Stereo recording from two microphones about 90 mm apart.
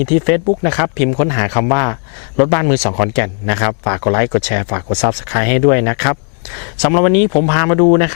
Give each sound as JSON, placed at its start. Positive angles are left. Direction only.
{"t": 0.0, "sound": "speech", "side_deg": 15}